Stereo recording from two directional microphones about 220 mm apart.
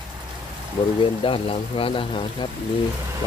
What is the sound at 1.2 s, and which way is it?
Speech, 25° left (ahead or behind).